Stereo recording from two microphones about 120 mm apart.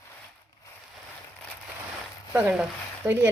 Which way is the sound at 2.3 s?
15° right (ahead or behind).